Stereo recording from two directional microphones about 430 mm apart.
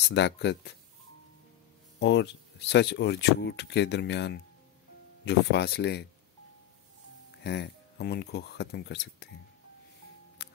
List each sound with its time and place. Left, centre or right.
0.1 s speech: left
2.0 s speech: left
7.4 s speech: left
10.4 s music: left